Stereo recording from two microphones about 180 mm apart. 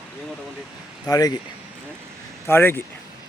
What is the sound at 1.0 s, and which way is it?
Speech, 20° left (ahead or behind).